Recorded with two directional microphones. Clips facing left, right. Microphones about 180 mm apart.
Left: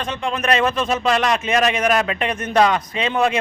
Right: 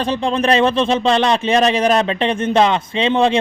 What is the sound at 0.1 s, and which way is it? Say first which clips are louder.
Speech: right 4 dB; 30° right (ahead or behind).